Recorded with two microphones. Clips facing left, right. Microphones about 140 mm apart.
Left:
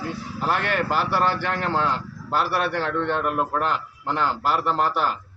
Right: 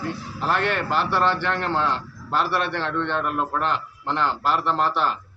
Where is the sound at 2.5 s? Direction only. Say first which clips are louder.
Left 1 dB; 45° left (ahead or behind).